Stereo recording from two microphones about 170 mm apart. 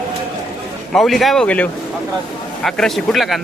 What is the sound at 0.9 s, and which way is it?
Speech, centre (ahead or behind).